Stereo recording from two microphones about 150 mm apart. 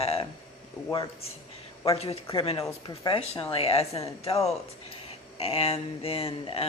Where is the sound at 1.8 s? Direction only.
40° left (ahead or behind).